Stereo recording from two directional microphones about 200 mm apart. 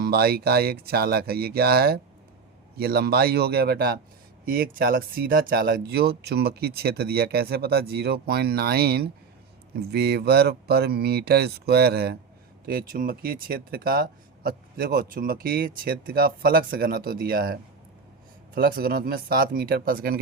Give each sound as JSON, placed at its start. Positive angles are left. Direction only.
{"t": 0.0, "sound": "speech", "side_deg": -50}